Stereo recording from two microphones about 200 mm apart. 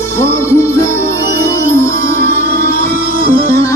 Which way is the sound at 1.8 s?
15° left (ahead or behind).